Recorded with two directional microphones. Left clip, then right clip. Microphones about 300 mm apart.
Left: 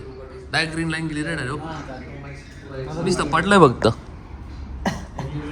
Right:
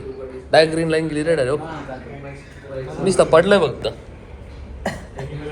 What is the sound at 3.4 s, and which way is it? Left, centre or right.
Speech, left.